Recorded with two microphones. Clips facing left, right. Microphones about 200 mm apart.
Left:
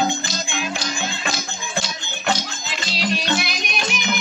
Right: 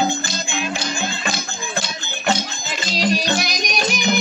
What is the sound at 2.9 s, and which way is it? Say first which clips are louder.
Music: right 3 dB; 40° right (ahead or behind).